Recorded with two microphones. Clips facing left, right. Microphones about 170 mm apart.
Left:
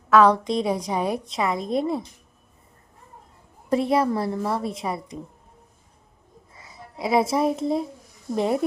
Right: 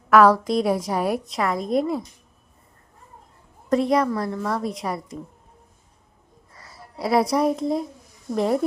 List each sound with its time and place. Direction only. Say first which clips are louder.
0.1 s a woman's voice: right 2 dB; 5° right (ahead or behind)
3.7 s a woman's voice: right 2 dB; 5° left (ahead or behind)
3.9 s speech: even; 30° left (ahead or behind)
4.4 s a woman's voice: even; centre (ahead or behind)
6.7 s a child's voice: right 1 dB; centre (ahead or behind)